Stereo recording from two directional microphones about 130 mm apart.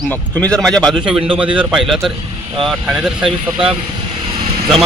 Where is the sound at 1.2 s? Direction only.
40° right (ahead or behind).